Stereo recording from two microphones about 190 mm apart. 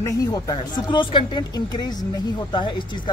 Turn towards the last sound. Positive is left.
turn(degrees=25)  # may be behind; listen again after turning